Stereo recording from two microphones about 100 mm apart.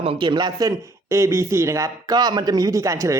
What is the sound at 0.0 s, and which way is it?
Speech, 60° right (ahead or behind).